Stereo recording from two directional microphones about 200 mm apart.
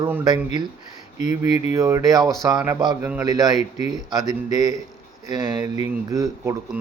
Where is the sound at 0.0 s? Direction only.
20° right (ahead or behind).